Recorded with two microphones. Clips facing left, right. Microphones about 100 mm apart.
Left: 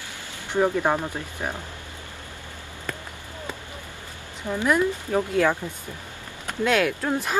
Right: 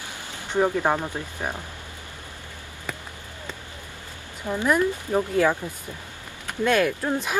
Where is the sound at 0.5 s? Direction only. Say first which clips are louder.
Even; 15° right (ahead or behind).